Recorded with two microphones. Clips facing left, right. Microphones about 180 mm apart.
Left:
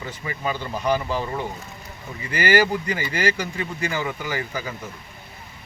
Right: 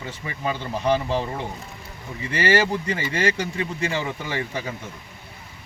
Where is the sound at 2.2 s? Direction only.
30° right (ahead or behind).